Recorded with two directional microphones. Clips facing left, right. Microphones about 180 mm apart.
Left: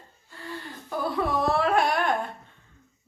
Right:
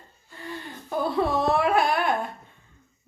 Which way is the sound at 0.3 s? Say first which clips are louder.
Right 1 dB; 20° right (ahead or behind).